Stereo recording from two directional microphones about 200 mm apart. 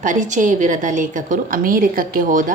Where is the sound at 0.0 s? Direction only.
40° right (ahead or behind).